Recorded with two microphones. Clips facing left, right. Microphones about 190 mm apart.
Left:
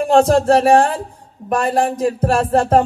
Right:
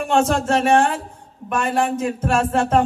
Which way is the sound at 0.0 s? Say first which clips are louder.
Left 6 dB; 35° left (ahead or behind).